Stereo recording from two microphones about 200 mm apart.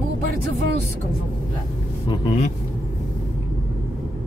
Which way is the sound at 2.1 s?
25° left (ahead or behind).